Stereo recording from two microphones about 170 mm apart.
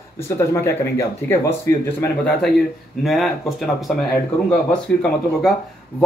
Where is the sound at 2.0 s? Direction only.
5° left (ahead or behind).